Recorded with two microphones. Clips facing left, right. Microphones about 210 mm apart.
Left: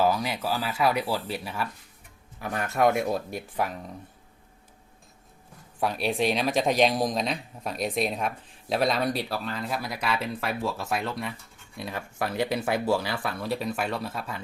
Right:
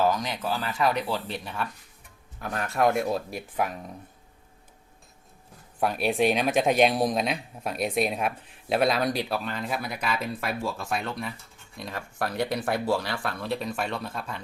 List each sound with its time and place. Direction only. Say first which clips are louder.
0.0 s speech: left 1 dB; 10° left (ahead or behind)
5.8 s speech: right 2 dB; centre (ahead or behind)